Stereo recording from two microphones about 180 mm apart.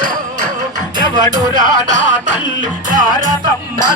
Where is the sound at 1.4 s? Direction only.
45° right (ahead or behind).